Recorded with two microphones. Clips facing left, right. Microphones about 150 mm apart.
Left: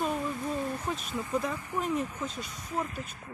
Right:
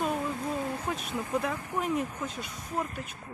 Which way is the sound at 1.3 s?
5° right (ahead or behind).